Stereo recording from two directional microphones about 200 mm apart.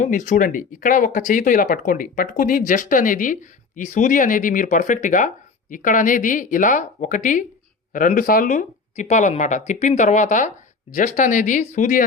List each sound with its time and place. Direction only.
0.0 s speech: 40° left (ahead or behind)